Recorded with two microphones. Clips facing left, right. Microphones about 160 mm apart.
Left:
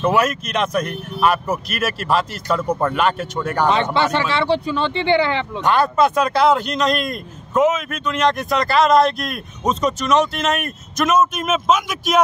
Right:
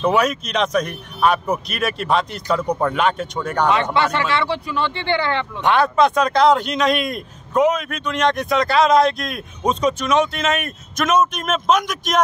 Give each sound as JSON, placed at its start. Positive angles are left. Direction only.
{"t": 0.0, "sound": "speech", "side_deg": 0}
{"t": 3.6, "sound": "speech", "side_deg": 25}
{"t": 5.6, "sound": "speech", "side_deg": 0}